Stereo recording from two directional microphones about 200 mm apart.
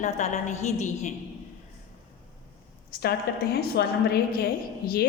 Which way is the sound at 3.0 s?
50° left (ahead or behind).